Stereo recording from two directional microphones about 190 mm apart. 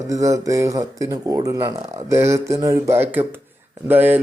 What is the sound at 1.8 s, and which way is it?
Speech, 35° right (ahead or behind).